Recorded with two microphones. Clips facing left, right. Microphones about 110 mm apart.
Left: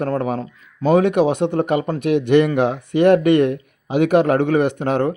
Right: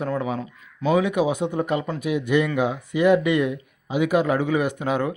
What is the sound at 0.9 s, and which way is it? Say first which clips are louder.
A man's voice: left 5 dB; 60° left (ahead or behind).